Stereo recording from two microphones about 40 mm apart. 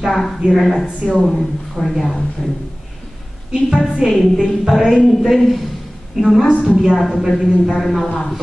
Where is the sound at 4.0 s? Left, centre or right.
Centre.